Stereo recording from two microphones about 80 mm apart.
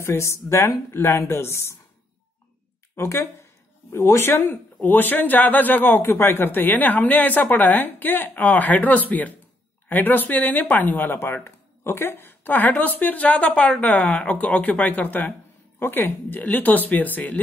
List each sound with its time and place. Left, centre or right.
0.0 s speech: left
3.0 s speech: left